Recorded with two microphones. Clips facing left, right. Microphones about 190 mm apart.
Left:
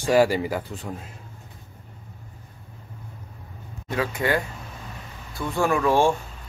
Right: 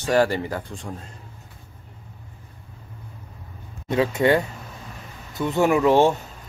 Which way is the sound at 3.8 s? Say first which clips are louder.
Right 6 dB; 25° right (ahead or behind).